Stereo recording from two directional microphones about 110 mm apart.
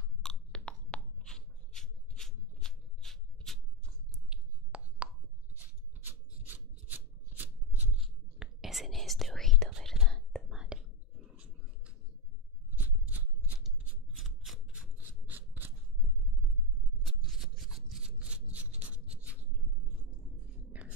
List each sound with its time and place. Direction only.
0.2 s a sound: 5° left (ahead or behind)
4.1 s a sound: 10° right (ahead or behind)
5.6 s rub: 15° right (ahead or behind)
8.0 s whispering: 5° right (ahead or behind)
12.7 s scissors: 15° right (ahead or behind)
14.1 s scissors: centre (ahead or behind); by 15.7 s 15° right (ahead or behind)
17.0 s scissors: 5° right (ahead or behind)
20.7 s whispering: 15° right (ahead or behind)